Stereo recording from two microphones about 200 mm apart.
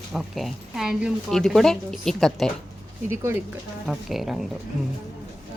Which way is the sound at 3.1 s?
10° right (ahead or behind).